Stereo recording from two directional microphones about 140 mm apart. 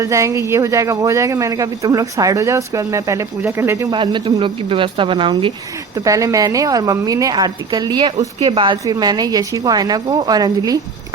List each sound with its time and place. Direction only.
0.0 s speech: 20° right (ahead or behind)
3.9 s a woman's voice: 35° right (ahead or behind)
6.1 s speech: 25° right (ahead or behind)